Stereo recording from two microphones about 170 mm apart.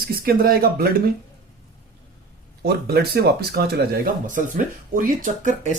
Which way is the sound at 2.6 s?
65° right (ahead or behind).